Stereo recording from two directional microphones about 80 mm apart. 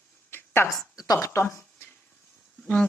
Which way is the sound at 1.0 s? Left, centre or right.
Left.